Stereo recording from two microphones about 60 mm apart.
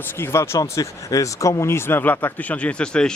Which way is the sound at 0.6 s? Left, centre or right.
Left.